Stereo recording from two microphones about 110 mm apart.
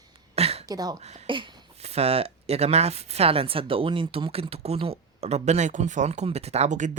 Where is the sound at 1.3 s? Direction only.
50° right (ahead or behind).